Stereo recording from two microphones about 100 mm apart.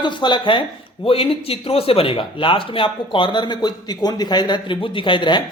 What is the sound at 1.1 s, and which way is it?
Speech, 70° left (ahead or behind).